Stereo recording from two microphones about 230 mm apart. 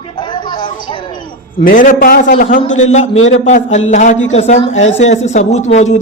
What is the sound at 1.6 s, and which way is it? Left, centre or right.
Speech, left.